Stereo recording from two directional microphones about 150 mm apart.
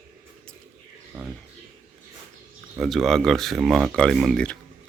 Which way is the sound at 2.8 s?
Centre (ahead or behind).